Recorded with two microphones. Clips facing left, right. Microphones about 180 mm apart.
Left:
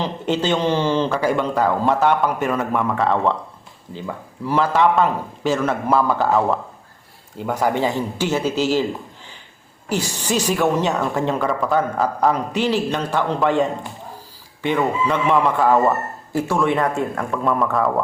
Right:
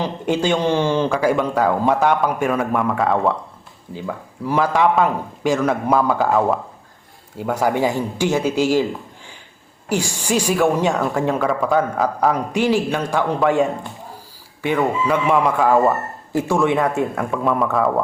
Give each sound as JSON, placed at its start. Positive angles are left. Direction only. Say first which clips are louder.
{"t": 0.0, "sound": "speech", "louder": "right 1 dB", "side_deg": -10}
{"t": 4.4, "sound": "speech", "louder": "even", "side_deg": -10}
{"t": 9.9, "sound": "speech", "louder": "right 2 dB", "side_deg": -10}